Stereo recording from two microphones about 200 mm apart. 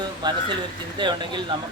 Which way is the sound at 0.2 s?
20° right (ahead or behind).